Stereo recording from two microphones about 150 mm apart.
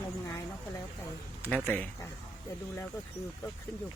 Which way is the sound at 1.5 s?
10° left (ahead or behind).